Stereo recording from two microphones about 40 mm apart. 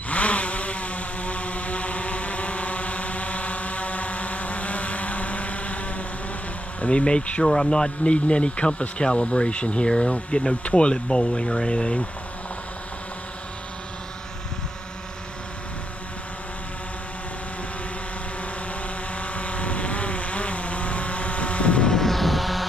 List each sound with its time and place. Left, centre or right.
0.1 s chainsaw: left
6.8 s speech: left
19.1 s vehicle: left
21.8 s music: centre